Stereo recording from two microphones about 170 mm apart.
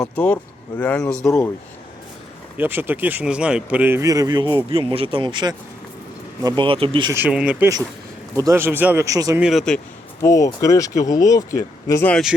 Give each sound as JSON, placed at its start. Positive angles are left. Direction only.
{"t": 0.8, "sound": "speech", "side_deg": 10}
{"t": 2.6, "sound": "speech", "side_deg": -10}
{"t": 7.1, "sound": "a man's voice", "side_deg": -10}
{"t": 8.4, "sound": "a man's voice", "side_deg": -15}
{"t": 9.4, "sound": "speech", "side_deg": 0}
{"t": 10.2, "sound": "speech", "side_deg": 20}